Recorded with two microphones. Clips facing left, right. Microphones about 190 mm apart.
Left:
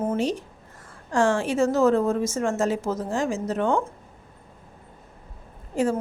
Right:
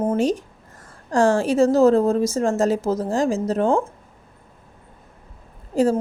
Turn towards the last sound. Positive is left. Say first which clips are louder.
# right 5 dB
turn(degrees=-35)  # may be behind; listen again after turning